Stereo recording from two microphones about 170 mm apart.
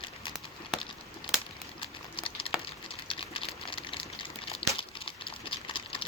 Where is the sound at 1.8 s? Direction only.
30° left (ahead or behind).